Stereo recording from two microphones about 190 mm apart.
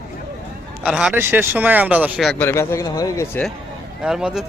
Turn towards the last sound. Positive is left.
turn(degrees=-5)  # may be behind; listen again after turning